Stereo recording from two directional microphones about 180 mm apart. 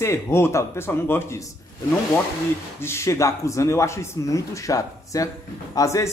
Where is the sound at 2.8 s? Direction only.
15° left (ahead or behind).